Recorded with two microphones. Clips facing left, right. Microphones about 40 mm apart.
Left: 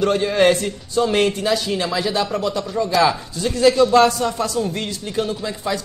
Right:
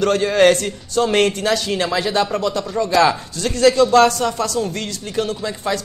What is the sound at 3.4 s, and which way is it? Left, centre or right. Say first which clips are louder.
Speech: right 1 dB; right.